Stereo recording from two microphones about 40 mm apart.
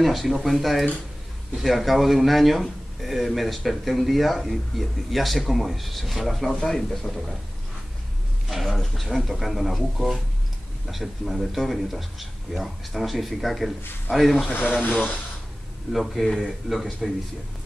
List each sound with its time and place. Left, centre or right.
0.0 s speech: centre
8.5 s speech: centre
14.5 s speech: left
15.9 s speech: centre